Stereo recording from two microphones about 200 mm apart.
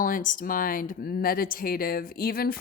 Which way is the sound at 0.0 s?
40° left (ahead or behind).